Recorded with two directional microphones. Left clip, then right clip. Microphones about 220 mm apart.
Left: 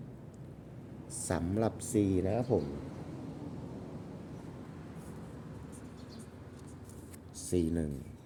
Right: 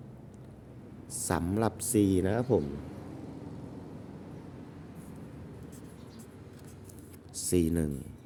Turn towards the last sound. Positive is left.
turn(degrees=-30)  # may be behind; listen again after turning